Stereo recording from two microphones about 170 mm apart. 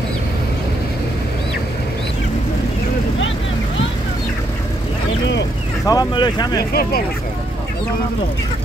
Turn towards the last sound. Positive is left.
turn(degrees=65)  # may be behind; listen again after turning